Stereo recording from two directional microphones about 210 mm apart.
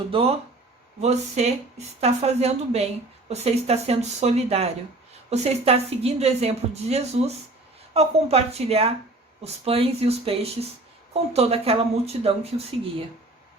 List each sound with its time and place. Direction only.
0.1 s a woman's voice: 30° right (ahead or behind)